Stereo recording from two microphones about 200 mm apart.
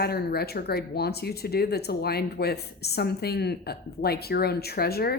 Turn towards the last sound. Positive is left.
turn(degrees=50)  # may be behind; listen again after turning